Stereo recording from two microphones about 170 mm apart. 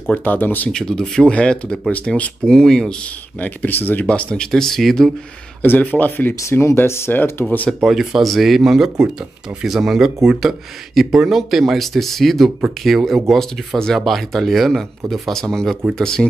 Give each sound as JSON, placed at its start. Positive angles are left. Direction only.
{"t": 0.1, "sound": "speech", "side_deg": 10}
{"t": 7.9, "sound": "speech", "side_deg": 0}